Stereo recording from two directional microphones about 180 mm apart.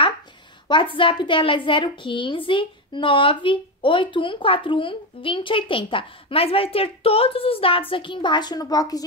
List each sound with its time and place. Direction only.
0.7 s a woman's voice: 25° left (ahead or behind)